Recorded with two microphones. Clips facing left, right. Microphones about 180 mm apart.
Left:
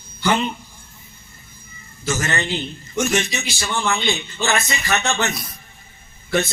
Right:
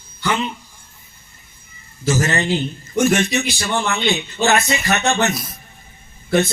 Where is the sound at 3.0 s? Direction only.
55° right (ahead or behind).